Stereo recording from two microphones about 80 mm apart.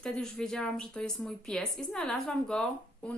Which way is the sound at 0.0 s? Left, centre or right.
Centre.